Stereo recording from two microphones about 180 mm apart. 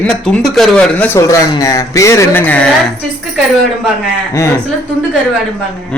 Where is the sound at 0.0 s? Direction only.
5° left (ahead or behind).